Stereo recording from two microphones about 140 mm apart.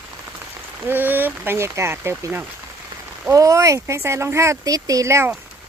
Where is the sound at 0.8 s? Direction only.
15° right (ahead or behind).